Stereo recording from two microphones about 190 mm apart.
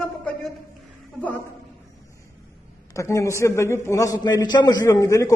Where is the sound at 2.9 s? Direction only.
15° left (ahead or behind).